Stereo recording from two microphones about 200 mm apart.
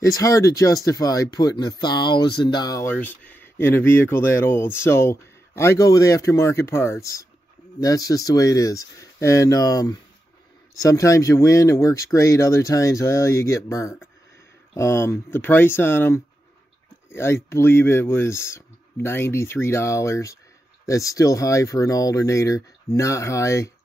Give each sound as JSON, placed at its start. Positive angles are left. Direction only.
{"t": 0.0, "sound": "speech", "side_deg": 15}